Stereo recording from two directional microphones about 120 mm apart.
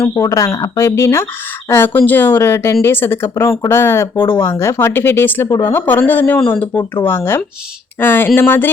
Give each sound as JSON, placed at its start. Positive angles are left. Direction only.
{"t": 0.1, "sound": "speech", "side_deg": 30}